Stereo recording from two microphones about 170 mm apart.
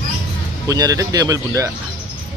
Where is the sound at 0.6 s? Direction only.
20° right (ahead or behind).